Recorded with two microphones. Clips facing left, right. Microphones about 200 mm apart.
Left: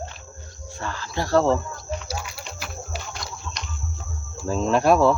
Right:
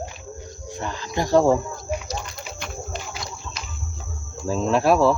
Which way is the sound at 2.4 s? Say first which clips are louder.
Right 3 dB; centre (ahead or behind).